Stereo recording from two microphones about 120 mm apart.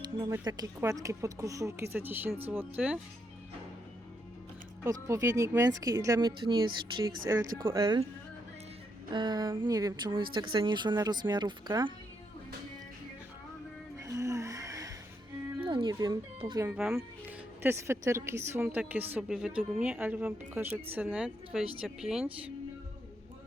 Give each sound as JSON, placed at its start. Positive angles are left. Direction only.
{"t": 0.4, "sound": "speech", "side_deg": -30}
{"t": 4.8, "sound": "speech", "side_deg": -25}
{"t": 7.3, "sound": "speech", "side_deg": -30}
{"t": 9.1, "sound": "speech", "side_deg": -40}
{"t": 10.1, "sound": "speech", "side_deg": -45}
{"t": 14.0, "sound": "a sound", "side_deg": -25}
{"t": 15.6, "sound": "chicken", "side_deg": -45}
{"t": 16.6, "sound": "speech", "side_deg": -5}
{"t": 16.9, "sound": "speech", "side_deg": -20}
{"t": 21.5, "sound": "speech", "side_deg": -5}